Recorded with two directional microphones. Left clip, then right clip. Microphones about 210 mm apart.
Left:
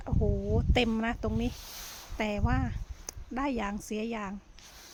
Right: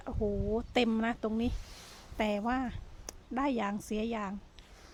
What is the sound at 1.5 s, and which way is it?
Speech, 30° left (ahead or behind).